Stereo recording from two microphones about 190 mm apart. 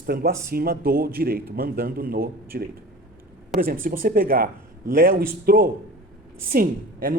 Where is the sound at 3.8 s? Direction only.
50° right (ahead or behind).